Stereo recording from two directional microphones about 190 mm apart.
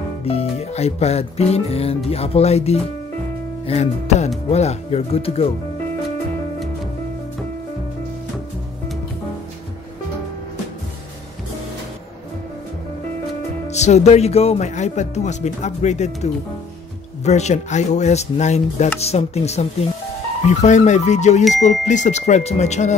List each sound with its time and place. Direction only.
0.2 s speech: 30° left (ahead or behind)
13.7 s speech: 35° left (ahead or behind)